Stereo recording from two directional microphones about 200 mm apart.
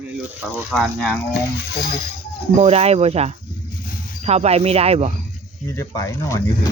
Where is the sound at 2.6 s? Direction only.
30° right (ahead or behind).